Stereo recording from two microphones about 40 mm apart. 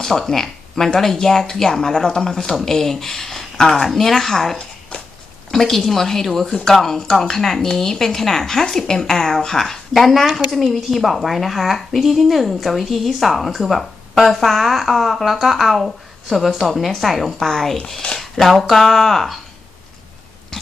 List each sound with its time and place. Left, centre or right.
0.0 s speech: centre
4.9 s dog: left
5.5 s a woman's voice: centre
18.4 s a woman's voice: centre